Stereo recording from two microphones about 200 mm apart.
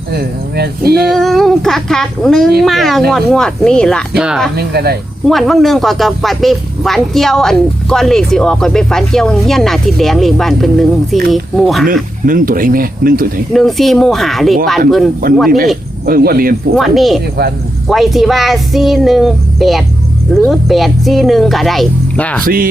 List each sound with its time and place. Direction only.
0.1 s speech: 55° right (ahead or behind)
1.0 s speech: centre (ahead or behind)
4.5 s speech: 50° right (ahead or behind)
5.2 s speech: centre (ahead or behind)
12.2 s speech: 45° right (ahead or behind)
13.5 s speech: centre (ahead or behind)
16.0 s speech: 50° right (ahead or behind)
16.7 s speech: centre (ahead or behind)
22.4 s speech: 45° right (ahead or behind)